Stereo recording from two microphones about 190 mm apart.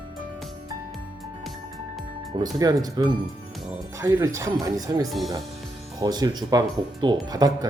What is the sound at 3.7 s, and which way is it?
Speech, 15° right (ahead or behind).